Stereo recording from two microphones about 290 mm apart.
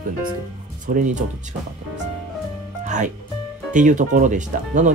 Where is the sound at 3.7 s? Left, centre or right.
Right.